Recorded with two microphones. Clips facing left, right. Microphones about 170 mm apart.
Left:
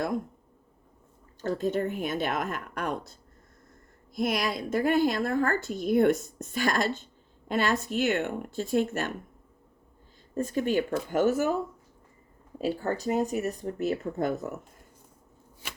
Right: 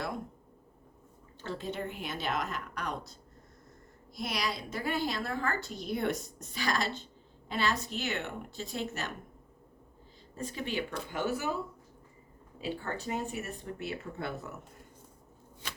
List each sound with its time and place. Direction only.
1.4 s a woman's voice: 45° left (ahead or behind)
10.3 s a woman's voice: 45° left (ahead or behind)